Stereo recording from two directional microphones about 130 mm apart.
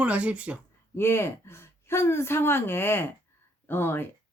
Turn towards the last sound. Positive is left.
turn(degrees=15)  # may be behind; listen again after turning